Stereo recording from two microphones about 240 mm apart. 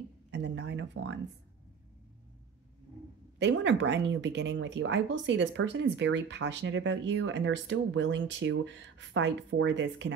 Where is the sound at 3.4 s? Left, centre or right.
Right.